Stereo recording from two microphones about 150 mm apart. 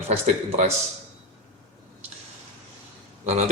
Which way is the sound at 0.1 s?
50° right (ahead or behind).